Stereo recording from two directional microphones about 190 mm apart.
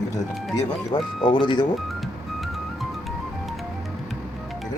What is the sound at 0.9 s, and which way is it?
Speech, 25° left (ahead or behind).